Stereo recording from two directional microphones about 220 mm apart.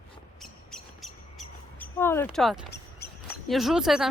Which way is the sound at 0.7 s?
Centre (ahead or behind).